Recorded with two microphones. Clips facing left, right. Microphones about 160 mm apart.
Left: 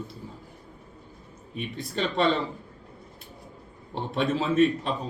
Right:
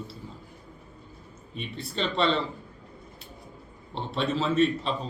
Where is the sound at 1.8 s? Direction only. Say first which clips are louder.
Left 1 dB; 45° left (ahead or behind).